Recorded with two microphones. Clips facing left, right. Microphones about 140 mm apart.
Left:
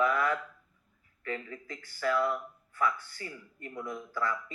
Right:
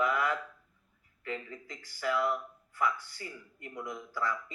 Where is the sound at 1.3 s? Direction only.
20° right (ahead or behind).